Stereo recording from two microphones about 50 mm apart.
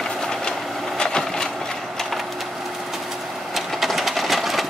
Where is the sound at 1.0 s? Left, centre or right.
Centre.